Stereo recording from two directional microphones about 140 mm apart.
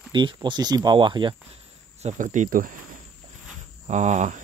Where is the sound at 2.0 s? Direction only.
60° right (ahead or behind).